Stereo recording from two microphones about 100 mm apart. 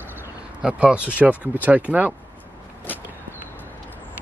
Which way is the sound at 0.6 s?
10° right (ahead or behind).